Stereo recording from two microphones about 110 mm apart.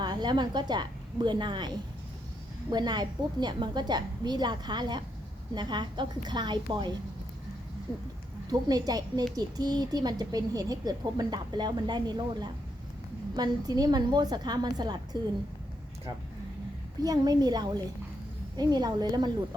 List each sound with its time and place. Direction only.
0.0 s a woman's voice: 40° right (ahead or behind)
8.4 s speech: 35° right (ahead or behind)
17.0 s speech: 35° right (ahead or behind)